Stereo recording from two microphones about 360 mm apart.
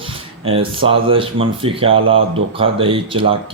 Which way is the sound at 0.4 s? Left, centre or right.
Centre.